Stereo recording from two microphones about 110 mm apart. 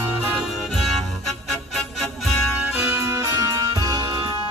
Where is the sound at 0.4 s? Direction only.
Centre (ahead or behind).